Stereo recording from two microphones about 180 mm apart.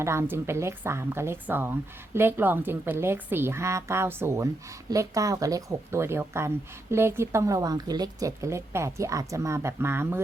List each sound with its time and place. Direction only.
0.0 s speech: 15° right (ahead or behind)